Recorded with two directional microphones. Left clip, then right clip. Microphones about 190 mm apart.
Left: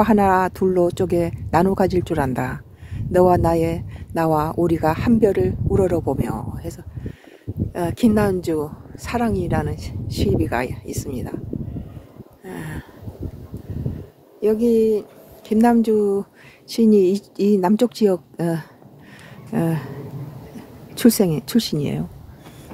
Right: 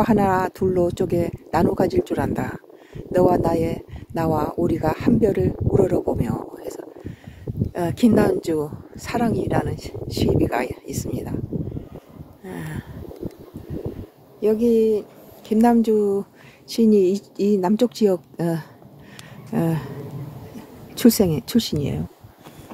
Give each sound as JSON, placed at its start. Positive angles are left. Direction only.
{"t": 0.0, "sound": "speech", "side_deg": 15}
{"t": 7.7, "sound": "a woman's voice", "side_deg": 0}
{"t": 12.4, "sound": "speech", "side_deg": 5}
{"t": 14.4, "sound": "a woman's voice", "side_deg": 5}